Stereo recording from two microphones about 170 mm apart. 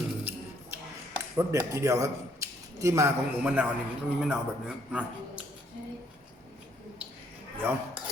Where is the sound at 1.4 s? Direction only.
15° right (ahead or behind).